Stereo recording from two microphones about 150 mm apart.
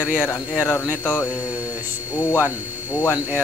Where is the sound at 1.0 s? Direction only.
10° left (ahead or behind).